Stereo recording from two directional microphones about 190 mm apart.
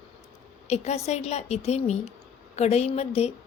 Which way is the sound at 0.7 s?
35° left (ahead or behind).